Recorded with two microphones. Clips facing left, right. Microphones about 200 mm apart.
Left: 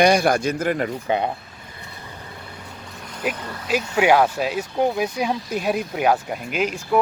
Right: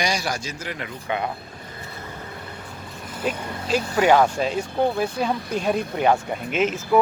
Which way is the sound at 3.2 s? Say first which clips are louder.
Even; 10° left (ahead or behind).